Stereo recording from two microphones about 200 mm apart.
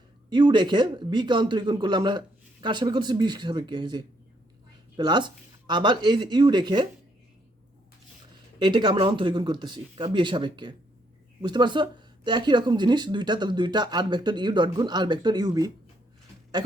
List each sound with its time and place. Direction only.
0.3 s speech: 25° right (ahead or behind)
8.5 s speech: 25° right (ahead or behind)